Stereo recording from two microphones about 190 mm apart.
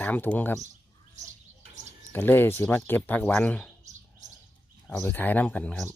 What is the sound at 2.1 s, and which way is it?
Speech, 10° left (ahead or behind).